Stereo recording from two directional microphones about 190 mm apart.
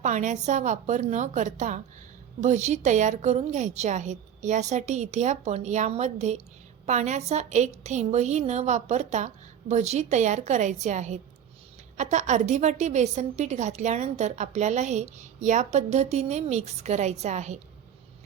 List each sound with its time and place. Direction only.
0.0 s a woman's voice: 40° right (ahead or behind)